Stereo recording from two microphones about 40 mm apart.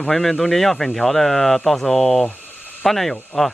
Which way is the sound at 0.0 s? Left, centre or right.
Centre.